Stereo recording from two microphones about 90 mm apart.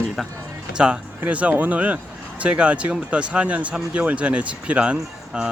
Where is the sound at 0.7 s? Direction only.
10° right (ahead or behind).